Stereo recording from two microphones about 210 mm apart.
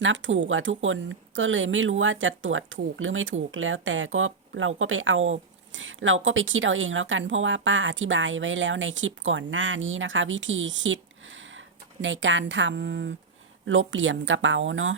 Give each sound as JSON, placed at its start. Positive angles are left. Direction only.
{"t": 0.0, "sound": "speech", "side_deg": -65}
{"t": 12.0, "sound": "speech", "side_deg": -65}
{"t": 13.7, "sound": "speech", "side_deg": -65}